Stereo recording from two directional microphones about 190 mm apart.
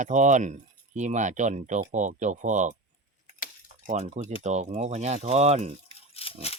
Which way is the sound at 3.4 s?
45° left (ahead or behind).